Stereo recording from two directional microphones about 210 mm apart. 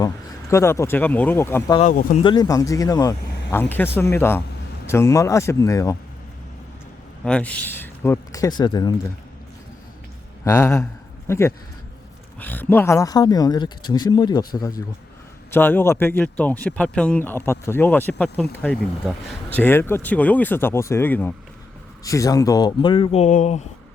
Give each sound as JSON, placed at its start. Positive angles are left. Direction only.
{"t": 0.0, "sound": "speech", "side_deg": 15}
{"t": 1.8, "sound": "speech", "side_deg": 40}
{"t": 2.2, "sound": "speech", "side_deg": 20}
{"t": 7.3, "sound": "speech", "side_deg": 5}
{"t": 10.4, "sound": "speech", "side_deg": 15}